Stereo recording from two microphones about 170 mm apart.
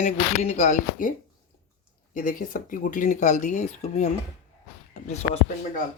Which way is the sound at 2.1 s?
50° left (ahead or behind).